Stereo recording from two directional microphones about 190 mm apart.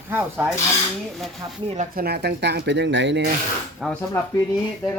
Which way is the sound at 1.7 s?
45° right (ahead or behind).